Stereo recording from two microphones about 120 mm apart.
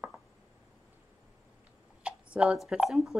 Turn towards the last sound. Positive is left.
turn(degrees=0)  # may be behind; listen again after turning